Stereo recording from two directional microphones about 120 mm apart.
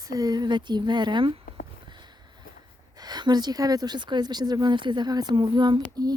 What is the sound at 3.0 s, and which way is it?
Speech, 35° right (ahead or behind).